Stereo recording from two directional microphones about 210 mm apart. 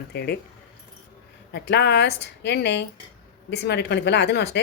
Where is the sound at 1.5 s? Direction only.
55° left (ahead or behind).